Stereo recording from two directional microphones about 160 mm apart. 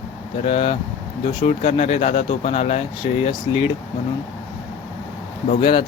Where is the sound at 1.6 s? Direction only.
45° left (ahead or behind).